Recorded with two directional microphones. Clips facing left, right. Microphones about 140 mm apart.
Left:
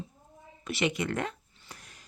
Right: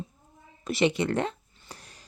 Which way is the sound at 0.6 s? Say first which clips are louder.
Right 5 dB; 35° right (ahead or behind).